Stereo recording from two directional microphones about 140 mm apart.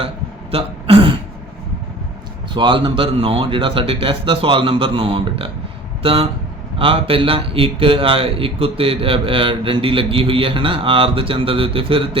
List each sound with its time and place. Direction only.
0.5 s throat clearing: 40° right (ahead or behind)
2.5 s a man's voice: 35° right (ahead or behind)